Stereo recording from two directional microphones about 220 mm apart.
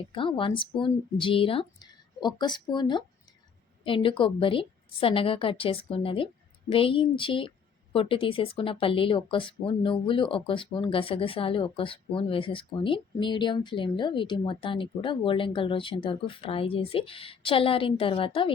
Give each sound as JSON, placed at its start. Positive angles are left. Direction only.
{"t": 0.1, "sound": "speech", "side_deg": 25}